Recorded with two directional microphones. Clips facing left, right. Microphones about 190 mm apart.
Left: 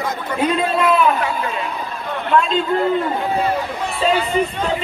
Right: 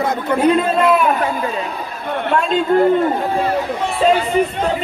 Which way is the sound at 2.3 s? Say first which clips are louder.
Right 1 dB; 45° right (ahead or behind).